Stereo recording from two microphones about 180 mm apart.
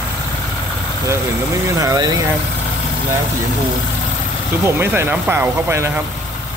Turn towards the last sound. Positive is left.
turn(degrees=-15)  # may be behind; listen again after turning